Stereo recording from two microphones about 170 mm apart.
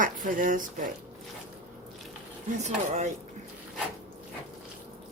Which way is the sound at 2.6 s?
45° right (ahead or behind).